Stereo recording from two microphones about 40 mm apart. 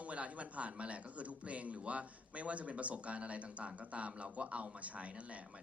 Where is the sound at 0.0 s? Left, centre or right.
Right.